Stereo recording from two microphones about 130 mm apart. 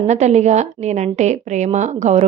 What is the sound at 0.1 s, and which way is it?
Speech, 60° right (ahead or behind).